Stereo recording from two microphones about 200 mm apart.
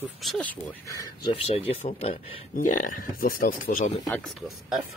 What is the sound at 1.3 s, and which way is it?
Speech, 30° left (ahead or behind).